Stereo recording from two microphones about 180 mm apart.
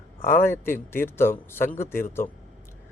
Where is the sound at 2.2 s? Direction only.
50° left (ahead or behind).